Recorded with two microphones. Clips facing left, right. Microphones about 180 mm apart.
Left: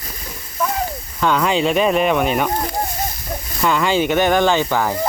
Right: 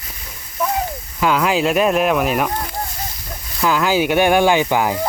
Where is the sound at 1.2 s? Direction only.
5° right (ahead or behind).